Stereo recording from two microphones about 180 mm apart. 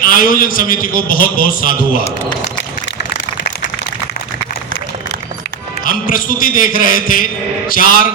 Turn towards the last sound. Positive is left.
turn(degrees=50)  # may be behind; listen again after turning